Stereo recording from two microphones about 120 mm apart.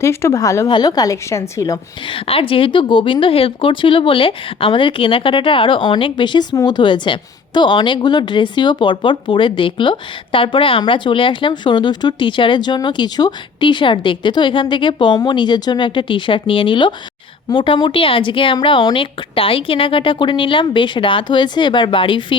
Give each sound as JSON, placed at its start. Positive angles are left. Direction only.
{"t": 0.0, "sound": "a woman's voice", "side_deg": 20}
{"t": 2.0, "sound": "speech", "side_deg": 50}